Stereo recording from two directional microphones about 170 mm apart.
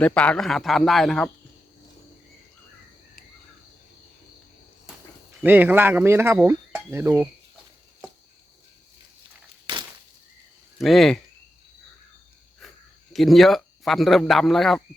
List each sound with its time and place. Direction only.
0.0 s speech: 5° left (ahead or behind)
5.4 s speech: 10° right (ahead or behind)
9.7 s a sound: 25° right (ahead or behind)
10.8 s speech: centre (ahead or behind)
13.1 s speech: centre (ahead or behind)